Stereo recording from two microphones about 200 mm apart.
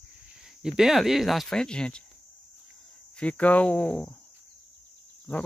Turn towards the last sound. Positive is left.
turn(degrees=10)  # may be behind; listen again after turning